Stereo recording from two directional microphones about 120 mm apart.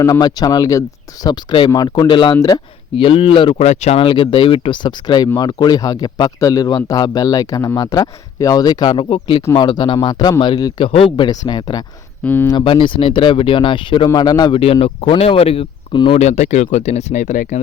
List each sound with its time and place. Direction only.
0.0 s speech: 30° left (ahead or behind)
3.0 s speech: 50° left (ahead or behind)
3.6 s speech: 70° left (ahead or behind); by 9.0 s 35° left (ahead or behind)
9.0 s speech: 45° left (ahead or behind)
11.3 s speech: 35° left (ahead or behind)
12.2 s speech: 15° left (ahead or behind)
12.5 s speech: 40° left (ahead or behind)
14.6 s speech: 55° left (ahead or behind)
16.1 s speech: 70° left (ahead or behind); by 17.6 s 90° left